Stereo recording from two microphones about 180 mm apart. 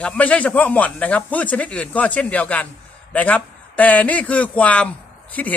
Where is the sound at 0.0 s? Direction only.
10° left (ahead or behind).